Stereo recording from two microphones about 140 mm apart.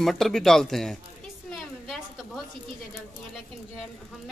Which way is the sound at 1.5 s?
Centre (ahead or behind).